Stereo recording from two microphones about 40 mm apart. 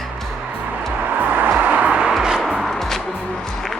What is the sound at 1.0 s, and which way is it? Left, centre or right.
Music, right.